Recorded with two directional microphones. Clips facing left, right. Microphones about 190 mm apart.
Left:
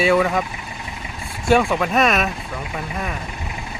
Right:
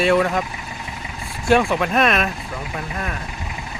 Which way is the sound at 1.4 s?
Centre (ahead or behind).